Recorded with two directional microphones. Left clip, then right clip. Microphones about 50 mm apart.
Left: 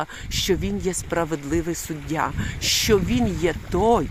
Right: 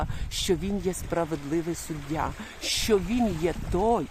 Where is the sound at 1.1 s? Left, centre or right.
Left.